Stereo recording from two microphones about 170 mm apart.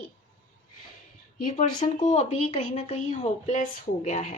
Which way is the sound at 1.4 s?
45° left (ahead or behind).